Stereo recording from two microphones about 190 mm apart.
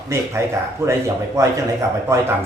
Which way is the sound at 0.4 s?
15° right (ahead or behind).